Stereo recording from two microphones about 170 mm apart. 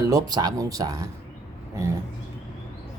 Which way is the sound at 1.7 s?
15° right (ahead or behind).